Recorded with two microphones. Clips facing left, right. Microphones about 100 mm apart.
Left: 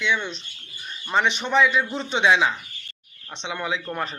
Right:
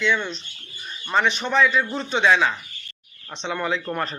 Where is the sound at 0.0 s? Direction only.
10° left (ahead or behind).